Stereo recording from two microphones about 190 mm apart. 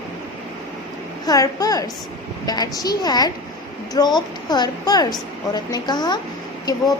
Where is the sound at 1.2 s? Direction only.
20° left (ahead or behind).